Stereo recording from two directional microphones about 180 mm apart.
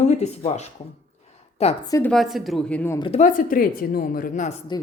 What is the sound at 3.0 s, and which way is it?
A woman's voice, 40° left (ahead or behind).